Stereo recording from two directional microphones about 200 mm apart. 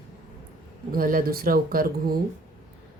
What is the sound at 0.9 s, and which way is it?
Speech, 45° right (ahead or behind).